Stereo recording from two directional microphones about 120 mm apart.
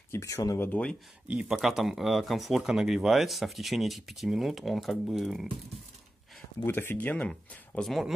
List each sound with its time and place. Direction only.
0.1 s speech: 25° left (ahead or behind)
0.7 s speech: 10° left (ahead or behind)
1.2 s speech: 10° right (ahead or behind)
6.6 s speech: 20° left (ahead or behind); by 8.1 s centre (ahead or behind)